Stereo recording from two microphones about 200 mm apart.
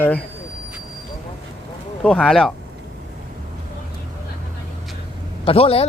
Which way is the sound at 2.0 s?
5° left (ahead or behind).